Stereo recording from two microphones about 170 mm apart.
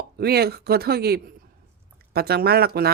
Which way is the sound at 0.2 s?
65° right (ahead or behind).